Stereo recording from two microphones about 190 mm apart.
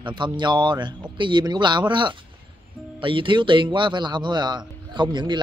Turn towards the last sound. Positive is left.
turn(degrees=-25)  # may be behind; listen again after turning